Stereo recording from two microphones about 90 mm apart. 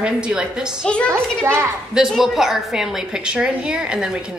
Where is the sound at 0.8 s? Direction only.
10° left (ahead or behind).